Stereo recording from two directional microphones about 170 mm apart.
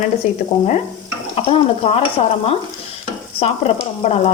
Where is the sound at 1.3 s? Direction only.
35° left (ahead or behind).